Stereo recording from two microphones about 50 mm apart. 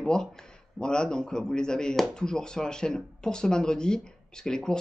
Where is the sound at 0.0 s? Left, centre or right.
Centre.